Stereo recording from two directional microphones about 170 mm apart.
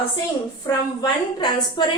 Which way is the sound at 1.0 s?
25° left (ahead or behind).